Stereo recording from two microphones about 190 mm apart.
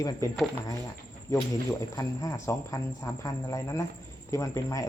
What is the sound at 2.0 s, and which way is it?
Speech, 15° left (ahead or behind).